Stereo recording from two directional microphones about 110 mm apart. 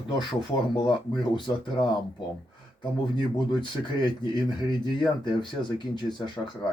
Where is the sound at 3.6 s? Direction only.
45° left (ahead or behind).